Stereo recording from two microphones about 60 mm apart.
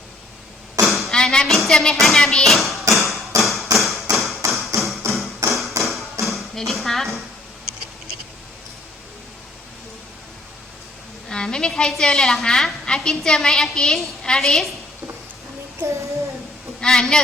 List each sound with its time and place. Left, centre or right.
0.9 s a sound: centre
1.1 s music: centre
1.5 s music: centre
2.9 s a sound: centre
4.1 s thump: centre
4.7 s tap: right
5.5 s tap: centre
6.2 s a sound: centre
11.3 s a woman's voice: centre
14.3 s music: centre
15.9 s child singing: right
16.8 s a woman's voice: centre